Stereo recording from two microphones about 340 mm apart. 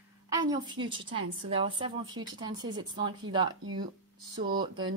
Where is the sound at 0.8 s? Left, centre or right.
Centre.